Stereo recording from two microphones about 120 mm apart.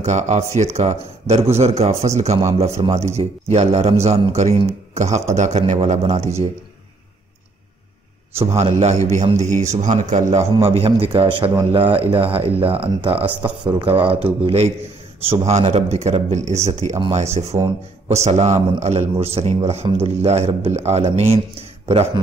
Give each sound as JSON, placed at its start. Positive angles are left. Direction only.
{"t": 0.0, "sound": "a man's voice", "side_deg": -70}
{"t": 8.4, "sound": "a man's voice", "side_deg": -60}
{"t": 10.6, "sound": "speech", "side_deg": -50}
{"t": 13.2, "sound": "a man's voice", "side_deg": -15}
{"t": 13.8, "sound": "speech", "side_deg": -50}
{"t": 15.4, "sound": "speech", "side_deg": -65}